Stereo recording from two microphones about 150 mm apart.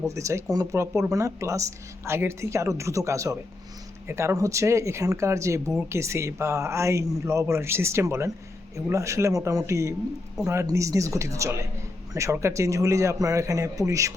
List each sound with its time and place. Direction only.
0.1 s speech: 20° right (ahead or behind)